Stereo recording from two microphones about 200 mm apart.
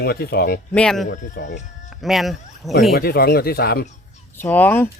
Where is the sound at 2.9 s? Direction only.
50° left (ahead or behind).